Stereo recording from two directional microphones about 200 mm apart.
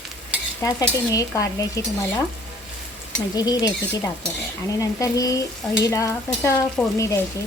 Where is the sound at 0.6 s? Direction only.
15° left (ahead or behind).